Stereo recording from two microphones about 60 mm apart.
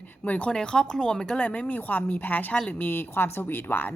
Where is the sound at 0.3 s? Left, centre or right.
Left.